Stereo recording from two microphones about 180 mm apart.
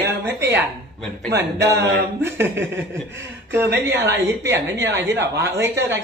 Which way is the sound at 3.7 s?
80° right.